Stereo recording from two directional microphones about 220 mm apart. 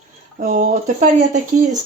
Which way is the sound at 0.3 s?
35° right (ahead or behind).